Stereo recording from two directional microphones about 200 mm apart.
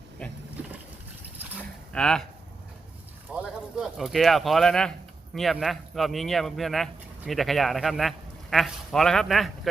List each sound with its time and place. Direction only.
1.9 s speech: 5° left (ahead or behind)
3.3 s speech: centre (ahead or behind)